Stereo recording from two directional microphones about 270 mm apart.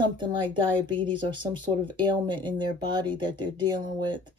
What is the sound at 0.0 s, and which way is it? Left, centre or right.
Speech, centre.